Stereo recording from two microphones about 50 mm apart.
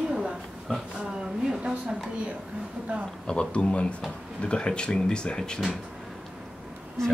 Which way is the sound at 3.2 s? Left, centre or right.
Centre.